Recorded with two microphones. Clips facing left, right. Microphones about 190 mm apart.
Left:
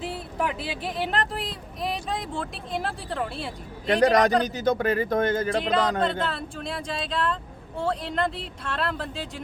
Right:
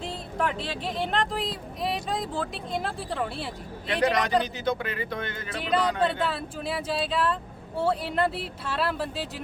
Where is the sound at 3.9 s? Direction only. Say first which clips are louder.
Left 5 dB; 45° left (ahead or behind).